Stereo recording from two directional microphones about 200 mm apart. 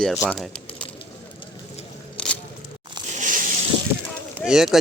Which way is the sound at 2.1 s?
5° left (ahead or behind).